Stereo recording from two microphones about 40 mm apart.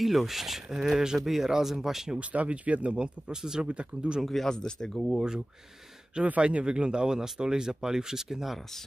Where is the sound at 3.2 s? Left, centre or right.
Centre.